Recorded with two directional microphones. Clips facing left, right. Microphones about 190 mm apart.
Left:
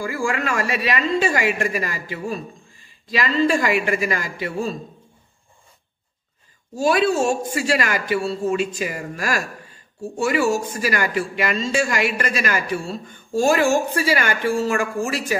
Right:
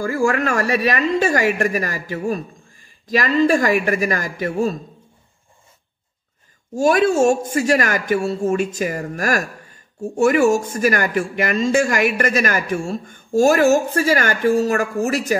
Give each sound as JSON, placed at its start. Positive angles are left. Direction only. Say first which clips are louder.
{"t": 0.0, "sound": "speech", "louder": "right 5 dB", "side_deg": -45}
{"t": 3.4, "sound": "speech", "louder": "right 3 dB", "side_deg": -45}
{"t": 6.7, "sound": "speech", "louder": "right 3 dB", "side_deg": -45}